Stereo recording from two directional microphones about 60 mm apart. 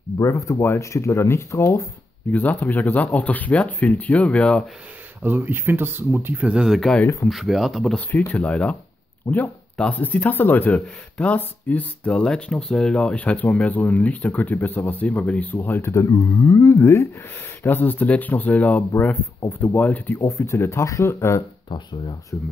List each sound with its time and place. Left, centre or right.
0.2 s speech: left
2.3 s speech: left
5.2 s speech: right
6.4 s speech: centre
8.3 s speech: left
9.3 s speech: left
9.9 s speech: left
12.1 s speech: centre; by 15.9 s left
15.9 s speech: left
17.6 s speech: left
20.2 s speech: left